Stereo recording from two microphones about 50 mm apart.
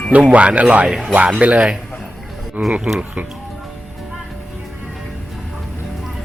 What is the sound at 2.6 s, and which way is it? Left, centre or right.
Speech, right.